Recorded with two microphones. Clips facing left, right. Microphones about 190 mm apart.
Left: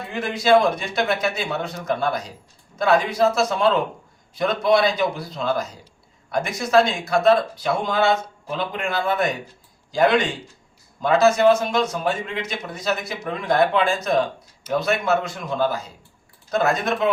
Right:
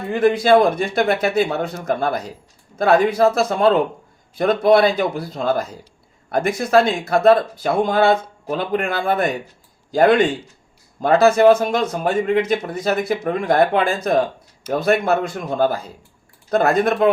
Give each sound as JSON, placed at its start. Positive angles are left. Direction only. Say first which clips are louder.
{"t": 0.1, "sound": "a man's voice", "louder": "right 4 dB", "side_deg": -55}